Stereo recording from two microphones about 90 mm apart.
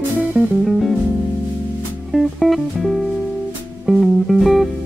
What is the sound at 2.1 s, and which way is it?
Music, centre (ahead or behind).